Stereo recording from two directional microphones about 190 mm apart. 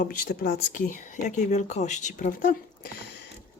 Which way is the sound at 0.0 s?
45° left (ahead or behind).